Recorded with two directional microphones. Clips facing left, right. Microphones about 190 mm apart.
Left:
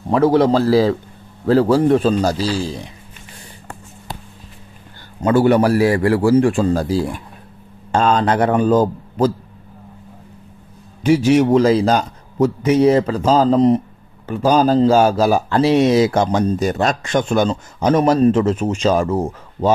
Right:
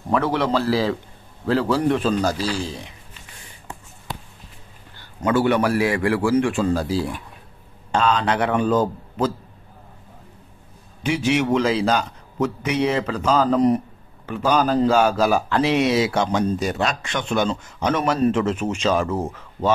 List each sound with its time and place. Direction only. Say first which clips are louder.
0.1 s speech: left 7 dB; 40° left (ahead or behind)
5.2 s speech: left 5 dB; 40° left (ahead or behind)
11.0 s speech: left 8 dB; 40° left (ahead or behind)